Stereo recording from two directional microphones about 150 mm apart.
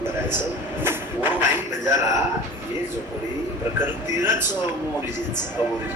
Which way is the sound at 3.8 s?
15° right (ahead or behind).